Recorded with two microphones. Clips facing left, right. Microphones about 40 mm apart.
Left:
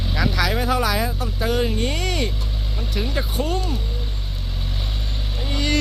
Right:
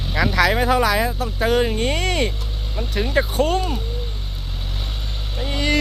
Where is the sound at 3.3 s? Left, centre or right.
Right.